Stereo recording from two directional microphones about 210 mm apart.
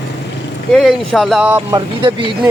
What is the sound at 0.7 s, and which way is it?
Speech, centre (ahead or behind).